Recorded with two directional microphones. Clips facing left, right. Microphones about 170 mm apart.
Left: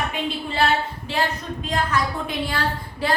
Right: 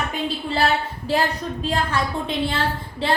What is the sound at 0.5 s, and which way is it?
A woman's voice, 35° right (ahead or behind).